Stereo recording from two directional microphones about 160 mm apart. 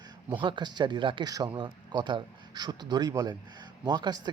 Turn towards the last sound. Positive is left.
turn(degrees=-25)  # may be behind; listen again after turning